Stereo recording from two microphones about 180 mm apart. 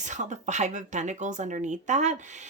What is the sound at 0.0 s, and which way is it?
Speech, 45° right (ahead or behind).